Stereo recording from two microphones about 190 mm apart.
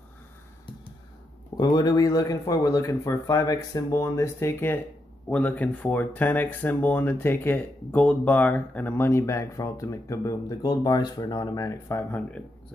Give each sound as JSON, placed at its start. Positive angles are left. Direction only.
{"t": 1.6, "sound": "speech", "side_deg": 20}